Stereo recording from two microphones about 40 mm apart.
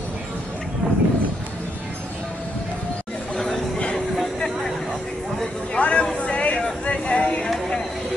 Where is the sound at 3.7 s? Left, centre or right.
Left.